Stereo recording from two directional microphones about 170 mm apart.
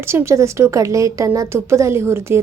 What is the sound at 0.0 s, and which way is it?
Speech, 15° right (ahead or behind).